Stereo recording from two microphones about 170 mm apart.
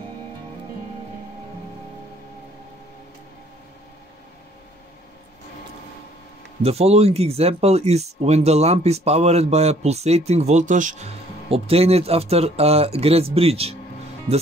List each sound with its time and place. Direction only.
6.6 s speech: 35° right (ahead or behind)
11.5 s speech: 35° right (ahead or behind)